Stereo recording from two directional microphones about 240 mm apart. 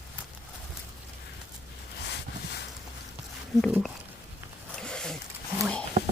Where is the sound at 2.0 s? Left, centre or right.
Left.